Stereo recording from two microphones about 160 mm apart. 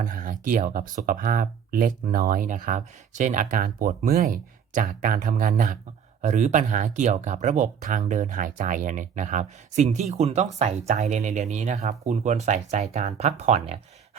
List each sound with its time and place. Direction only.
0.0 s speech: 55° right (ahead or behind)